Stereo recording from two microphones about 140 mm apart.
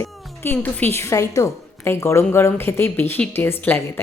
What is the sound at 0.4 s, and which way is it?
A woman's voice, 15° left (ahead or behind).